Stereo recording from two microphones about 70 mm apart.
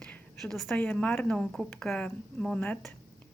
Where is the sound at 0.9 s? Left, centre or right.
Left.